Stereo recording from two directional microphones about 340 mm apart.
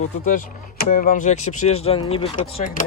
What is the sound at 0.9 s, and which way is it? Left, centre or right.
Speech, left.